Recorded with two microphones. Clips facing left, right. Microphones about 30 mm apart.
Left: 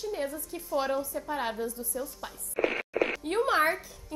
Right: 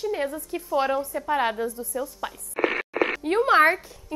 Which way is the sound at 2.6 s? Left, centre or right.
Right.